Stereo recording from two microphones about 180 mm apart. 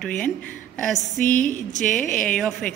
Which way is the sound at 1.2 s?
50° left (ahead or behind).